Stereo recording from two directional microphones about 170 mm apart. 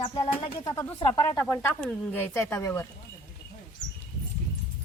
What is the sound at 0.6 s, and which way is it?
Speech, 20° left (ahead or behind).